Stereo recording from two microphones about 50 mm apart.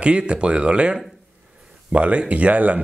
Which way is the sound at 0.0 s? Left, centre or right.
Right.